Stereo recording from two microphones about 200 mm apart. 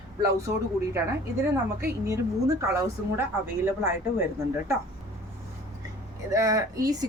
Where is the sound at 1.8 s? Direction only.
15° right (ahead or behind).